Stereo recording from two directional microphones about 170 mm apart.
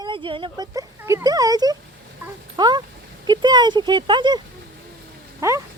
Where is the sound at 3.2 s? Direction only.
25° right (ahead or behind).